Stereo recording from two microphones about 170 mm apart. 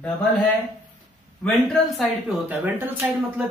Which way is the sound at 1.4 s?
Centre (ahead or behind).